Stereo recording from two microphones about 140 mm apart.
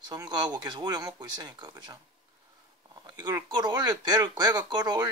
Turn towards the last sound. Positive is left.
turn(degrees=-30)  # may be behind; listen again after turning